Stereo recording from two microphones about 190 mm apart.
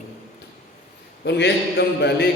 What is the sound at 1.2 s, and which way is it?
A man's voice, 65° left (ahead or behind).